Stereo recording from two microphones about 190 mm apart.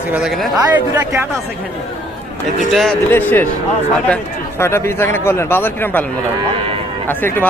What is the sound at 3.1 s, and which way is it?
Speech, 10° left (ahead or behind).